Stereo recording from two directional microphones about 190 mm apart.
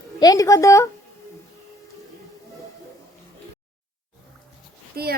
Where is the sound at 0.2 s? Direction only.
20° left (ahead or behind).